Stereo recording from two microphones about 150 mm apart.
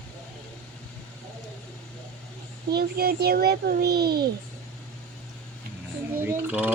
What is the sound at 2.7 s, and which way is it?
A child's voice, 90° right.